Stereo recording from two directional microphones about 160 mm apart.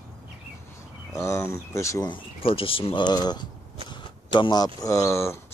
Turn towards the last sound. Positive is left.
turn(degrees=20)  # may be behind; listen again after turning